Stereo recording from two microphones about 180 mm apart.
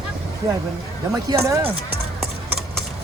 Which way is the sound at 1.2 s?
15° right (ahead or behind).